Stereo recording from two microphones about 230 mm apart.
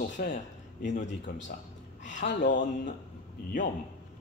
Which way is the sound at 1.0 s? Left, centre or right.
Left.